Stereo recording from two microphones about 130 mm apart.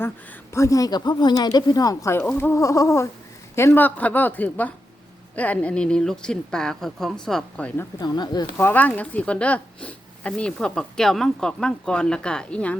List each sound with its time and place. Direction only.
0.5 s a woman's voice: 25° left (ahead or behind)
7.9 s speech: 30° left (ahead or behind)
8.5 s speech: 15° left (ahead or behind)